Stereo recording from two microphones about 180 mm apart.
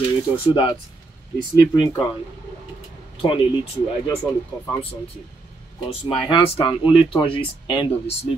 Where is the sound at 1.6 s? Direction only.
20° left (ahead or behind).